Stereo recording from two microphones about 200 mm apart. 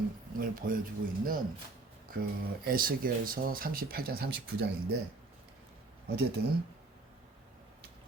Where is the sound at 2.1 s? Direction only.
45° right (ahead or behind).